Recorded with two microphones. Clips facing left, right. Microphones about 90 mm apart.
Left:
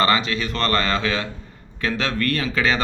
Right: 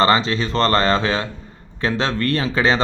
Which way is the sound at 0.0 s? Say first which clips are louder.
Right 3 dB; 30° right (ahead or behind).